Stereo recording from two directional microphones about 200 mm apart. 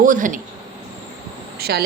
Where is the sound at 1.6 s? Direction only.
50° right (ahead or behind).